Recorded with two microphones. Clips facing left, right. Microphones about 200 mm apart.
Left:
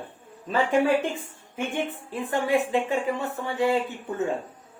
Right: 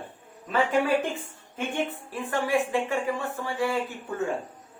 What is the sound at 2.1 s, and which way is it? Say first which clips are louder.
Speech: left 3 dB; 20° left (ahead or behind).